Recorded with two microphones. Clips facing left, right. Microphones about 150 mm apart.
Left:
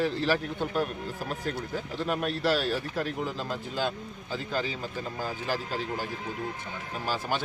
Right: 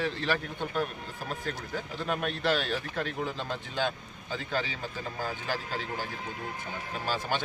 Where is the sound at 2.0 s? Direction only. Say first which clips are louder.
Left 2 dB; 5° left (ahead or behind).